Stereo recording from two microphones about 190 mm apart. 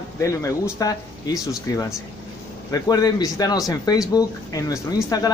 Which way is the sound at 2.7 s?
20° left (ahead or behind).